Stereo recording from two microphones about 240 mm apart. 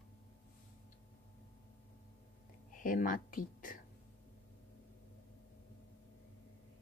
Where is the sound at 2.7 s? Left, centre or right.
Left.